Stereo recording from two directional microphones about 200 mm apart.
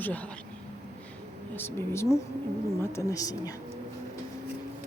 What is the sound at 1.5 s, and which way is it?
Speech, 10° left (ahead or behind).